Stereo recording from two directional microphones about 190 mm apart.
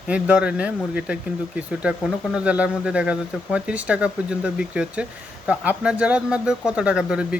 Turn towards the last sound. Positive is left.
turn(degrees=-5)  # may be behind; listen again after turning